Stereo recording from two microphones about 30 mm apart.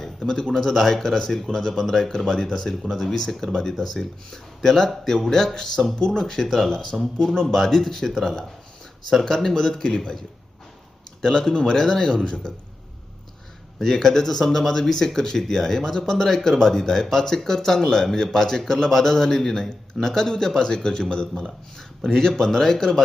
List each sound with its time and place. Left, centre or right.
0.0 s a man's voice: centre
0.5 s speech: centre
2.0 s speech: centre
6.7 s speech: left
6.9 s speech: centre
9.2 s speech: centre
11.2 s speech: centre
12.3 s speech: left
13.8 s speech: centre
21.4 s speech: centre